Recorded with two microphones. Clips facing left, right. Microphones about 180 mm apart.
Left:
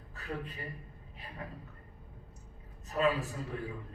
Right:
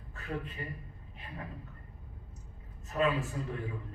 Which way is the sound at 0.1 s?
35° left (ahead or behind).